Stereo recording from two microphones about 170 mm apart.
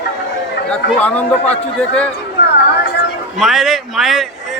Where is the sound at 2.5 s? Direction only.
80° left.